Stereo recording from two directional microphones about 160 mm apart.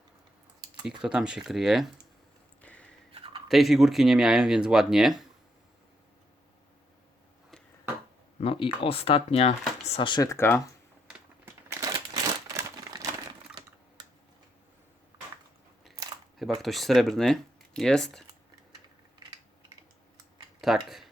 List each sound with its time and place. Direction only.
0.8 s speech: 5° right (ahead or behind)
2.6 s a sound: 10° left (ahead or behind)
3.1 s a sound: 35° right (ahead or behind)
3.5 s speech: centre (ahead or behind)
8.4 s speech: 35° left (ahead or behind)
10.2 s speech: 15° left (ahead or behind)
11.7 s crumpling: 20° right (ahead or behind)
16.4 s speech: centre (ahead or behind)
20.6 s speech: centre (ahead or behind)